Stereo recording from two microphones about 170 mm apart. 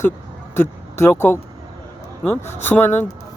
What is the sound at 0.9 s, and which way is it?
Speech, 15° left (ahead or behind).